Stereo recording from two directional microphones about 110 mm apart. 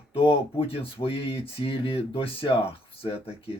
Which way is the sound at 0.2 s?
55° left (ahead or behind).